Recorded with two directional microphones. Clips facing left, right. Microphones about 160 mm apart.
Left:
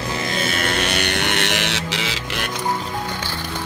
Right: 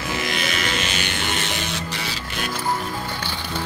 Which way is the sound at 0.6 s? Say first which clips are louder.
Left 4 dB; 55° left (ahead or behind).